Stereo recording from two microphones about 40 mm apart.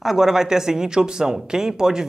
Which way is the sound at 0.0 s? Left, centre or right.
Centre.